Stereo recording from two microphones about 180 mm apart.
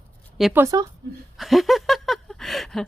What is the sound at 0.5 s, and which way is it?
Speech, 15° right (ahead or behind).